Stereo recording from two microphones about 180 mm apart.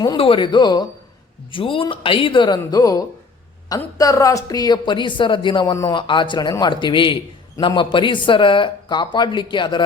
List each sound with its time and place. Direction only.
0.0 s speech: 25° left (ahead or behind)